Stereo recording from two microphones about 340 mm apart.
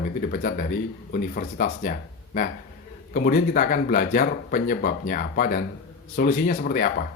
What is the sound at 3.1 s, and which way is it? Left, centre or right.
Speech, left.